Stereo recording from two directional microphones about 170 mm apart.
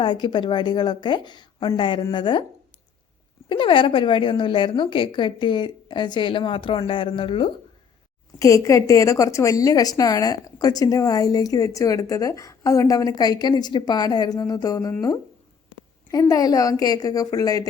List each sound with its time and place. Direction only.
0.0 s a woman's voice: 25° left (ahead or behind)
3.5 s a woman's voice: 30° left (ahead or behind)
8.4 s a woman's voice: 20° left (ahead or behind)
16.1 s a woman's voice: 20° left (ahead or behind)